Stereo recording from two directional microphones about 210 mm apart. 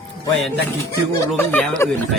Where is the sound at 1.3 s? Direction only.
5° left (ahead or behind).